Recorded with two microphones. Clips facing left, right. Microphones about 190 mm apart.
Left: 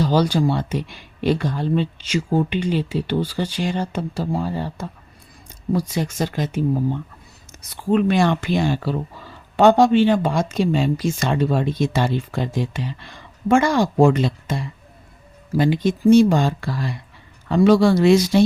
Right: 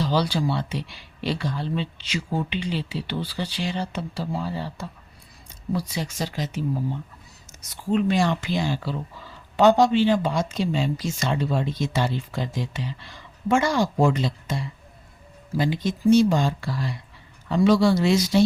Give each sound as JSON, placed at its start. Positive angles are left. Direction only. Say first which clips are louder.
{"t": 0.0, "sound": "speech", "louder": "left 5 dB", "side_deg": 45}
{"t": 7.5, "sound": "a sound", "louder": "left 4 dB", "side_deg": 60}
{"t": 7.9, "sound": "speech", "louder": "left 4 dB", "side_deg": 60}